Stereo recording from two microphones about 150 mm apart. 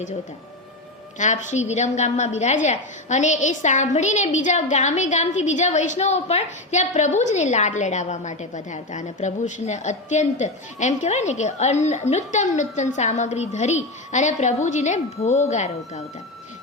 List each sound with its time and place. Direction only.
1.2 s a woman's voice: 55° left (ahead or behind)